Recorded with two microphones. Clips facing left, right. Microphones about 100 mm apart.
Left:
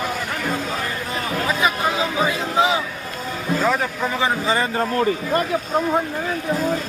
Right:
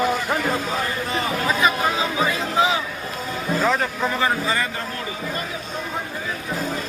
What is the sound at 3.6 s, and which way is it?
Speech, 15° left (ahead or behind).